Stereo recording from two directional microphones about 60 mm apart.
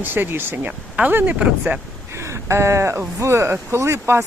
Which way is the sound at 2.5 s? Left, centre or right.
Right.